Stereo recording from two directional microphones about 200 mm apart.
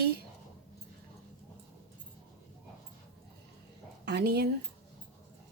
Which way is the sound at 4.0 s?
55° right (ahead or behind).